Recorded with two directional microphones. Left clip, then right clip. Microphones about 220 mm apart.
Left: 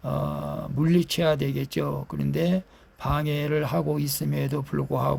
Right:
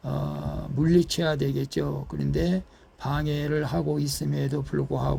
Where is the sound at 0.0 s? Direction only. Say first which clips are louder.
Left 4 dB; 20° left (ahead or behind).